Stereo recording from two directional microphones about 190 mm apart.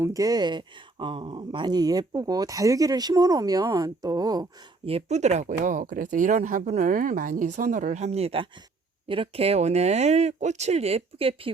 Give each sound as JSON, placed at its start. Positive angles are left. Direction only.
{"t": 0.0, "sound": "speech", "side_deg": -20}
{"t": 4.9, "sound": "speech", "side_deg": -35}